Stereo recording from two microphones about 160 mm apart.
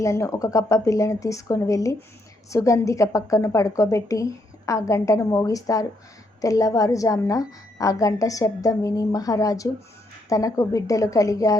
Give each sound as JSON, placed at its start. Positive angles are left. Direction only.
{"t": 0.0, "sound": "a woman's voice", "side_deg": 20}